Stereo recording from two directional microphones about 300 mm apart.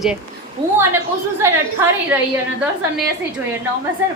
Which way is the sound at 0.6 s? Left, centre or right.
Centre.